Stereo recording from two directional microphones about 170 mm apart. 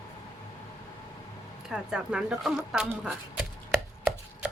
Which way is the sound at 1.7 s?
5° right (ahead or behind).